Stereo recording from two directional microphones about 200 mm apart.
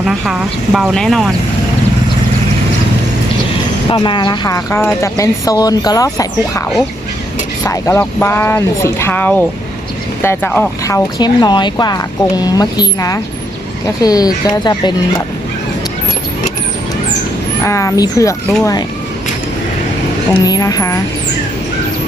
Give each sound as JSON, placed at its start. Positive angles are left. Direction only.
{"t": 0.0, "sound": "speech", "side_deg": 0}
{"t": 3.8, "sound": "speech", "side_deg": 25}
{"t": 7.6, "sound": "speech", "side_deg": 15}
{"t": 10.8, "sound": "speech", "side_deg": 15}
{"t": 17.6, "sound": "speech", "side_deg": 15}
{"t": 20.4, "sound": "speech", "side_deg": 20}